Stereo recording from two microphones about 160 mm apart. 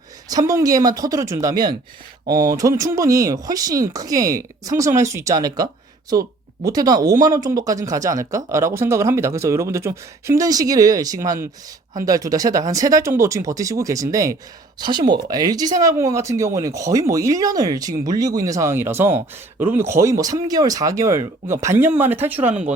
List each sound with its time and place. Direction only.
0.3 s speech: 20° right (ahead or behind)
6.7 s speech: 25° right (ahead or behind)